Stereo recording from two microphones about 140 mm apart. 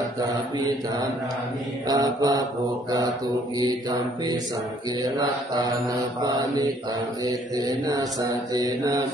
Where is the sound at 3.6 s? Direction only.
30° right (ahead or behind).